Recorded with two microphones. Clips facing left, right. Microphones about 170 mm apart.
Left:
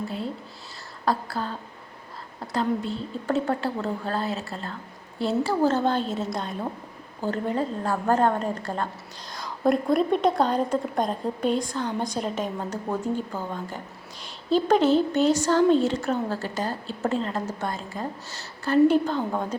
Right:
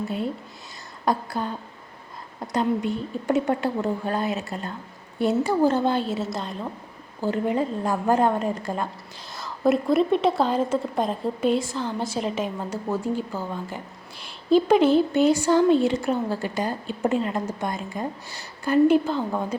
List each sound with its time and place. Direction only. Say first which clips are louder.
1.0 s a woman's voice: right 2 dB; 15° right (ahead or behind); by 6.7 s centre (ahead or behind)
7.2 s a woman's voice: right 3 dB; 10° right (ahead or behind)